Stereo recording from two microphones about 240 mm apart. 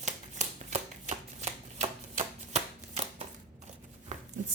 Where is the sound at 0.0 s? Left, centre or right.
Right.